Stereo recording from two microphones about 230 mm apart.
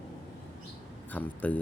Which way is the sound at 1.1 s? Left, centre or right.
Centre.